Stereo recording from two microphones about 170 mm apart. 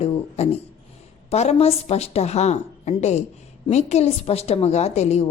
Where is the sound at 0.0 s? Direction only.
35° left (ahead or behind).